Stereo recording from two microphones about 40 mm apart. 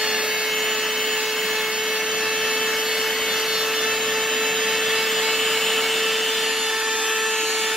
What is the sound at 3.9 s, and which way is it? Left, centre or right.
Wood, centre.